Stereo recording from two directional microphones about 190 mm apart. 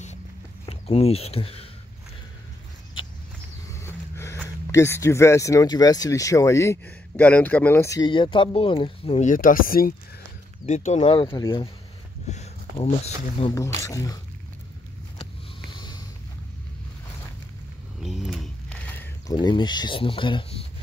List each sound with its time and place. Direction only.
0.7 s speech: 30° left (ahead or behind)
3.7 s a sound: 15° left (ahead or behind)
4.6 s speech: 15° left (ahead or behind); by 9.9 s 50° left (ahead or behind)
10.6 s speech: 40° left (ahead or behind)
11.0 s speech: 25° left (ahead or behind)
12.3 s speech: 35° left (ahead or behind)
13.8 s speech: 20° left (ahead or behind)
15.7 s a sound: 25° left (ahead or behind)
18.0 s a sound: centre (ahead or behind)
19.2 s speech: 20° left (ahead or behind)